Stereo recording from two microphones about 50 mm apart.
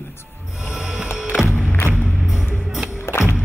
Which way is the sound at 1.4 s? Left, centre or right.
Centre.